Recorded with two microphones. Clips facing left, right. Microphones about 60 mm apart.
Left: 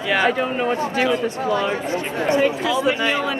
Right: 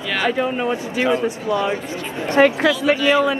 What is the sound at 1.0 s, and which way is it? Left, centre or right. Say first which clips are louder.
Speech: right 1 dB; centre.